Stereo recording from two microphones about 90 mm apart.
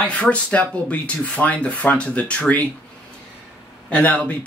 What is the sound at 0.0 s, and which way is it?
Speech, 15° left (ahead or behind).